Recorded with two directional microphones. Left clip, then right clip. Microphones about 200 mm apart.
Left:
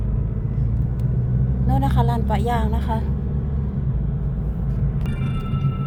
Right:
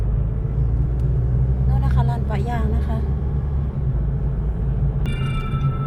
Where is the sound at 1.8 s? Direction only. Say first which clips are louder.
Left 6 dB; 30° left (ahead or behind).